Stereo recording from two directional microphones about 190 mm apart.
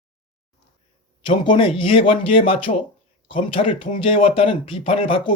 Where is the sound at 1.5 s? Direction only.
25° left (ahead or behind).